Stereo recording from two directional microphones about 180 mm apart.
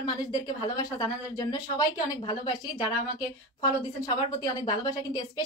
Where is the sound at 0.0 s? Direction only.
20° left (ahead or behind).